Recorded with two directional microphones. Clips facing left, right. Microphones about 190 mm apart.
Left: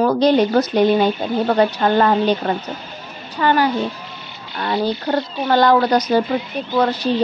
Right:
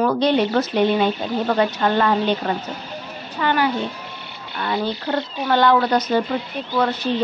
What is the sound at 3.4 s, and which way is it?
Speech, 40° left (ahead or behind).